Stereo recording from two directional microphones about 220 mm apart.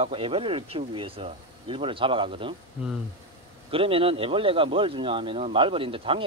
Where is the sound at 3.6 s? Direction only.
25° right (ahead or behind).